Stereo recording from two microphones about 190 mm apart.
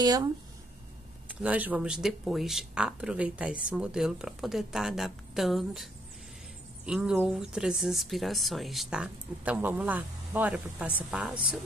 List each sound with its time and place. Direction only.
0.0 s speech: 20° right (ahead or behind)
1.4 s speech: 5° right (ahead or behind)
6.9 s speech: 5° right (ahead or behind)